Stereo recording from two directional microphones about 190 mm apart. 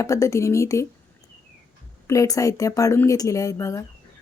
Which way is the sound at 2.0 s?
15° left (ahead or behind).